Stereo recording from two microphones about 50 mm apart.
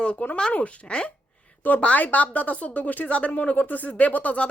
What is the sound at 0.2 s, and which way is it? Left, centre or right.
Speech, left.